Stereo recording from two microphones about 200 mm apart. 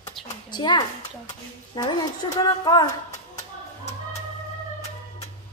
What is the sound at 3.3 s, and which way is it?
Music, 35° left (ahead or behind).